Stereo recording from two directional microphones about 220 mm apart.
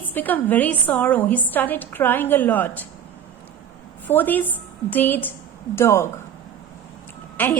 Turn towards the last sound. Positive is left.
turn(degrees=10)  # may be behind; listen again after turning